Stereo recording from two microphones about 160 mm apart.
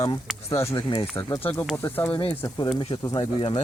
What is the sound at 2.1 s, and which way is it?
Speech, 25° left (ahead or behind).